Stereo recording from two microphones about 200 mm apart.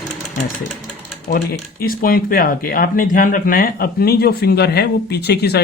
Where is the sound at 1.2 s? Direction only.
40° left (ahead or behind).